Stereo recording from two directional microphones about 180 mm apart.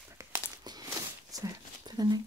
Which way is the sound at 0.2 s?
20° right (ahead or behind).